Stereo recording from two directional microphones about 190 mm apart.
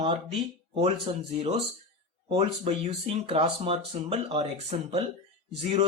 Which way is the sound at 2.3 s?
30° right (ahead or behind).